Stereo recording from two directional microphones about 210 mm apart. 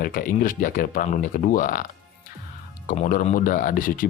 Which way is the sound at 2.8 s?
40° left (ahead or behind).